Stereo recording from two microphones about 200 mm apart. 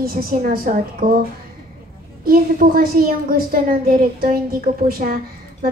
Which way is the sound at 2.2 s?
45° right (ahead or behind).